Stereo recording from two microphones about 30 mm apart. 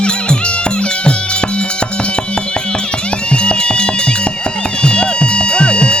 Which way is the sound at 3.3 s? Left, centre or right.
Left.